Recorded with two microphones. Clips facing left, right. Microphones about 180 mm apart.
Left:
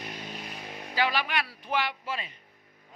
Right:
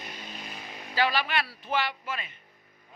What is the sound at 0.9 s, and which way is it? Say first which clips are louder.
Speech: right 1 dB; 15° left (ahead or behind).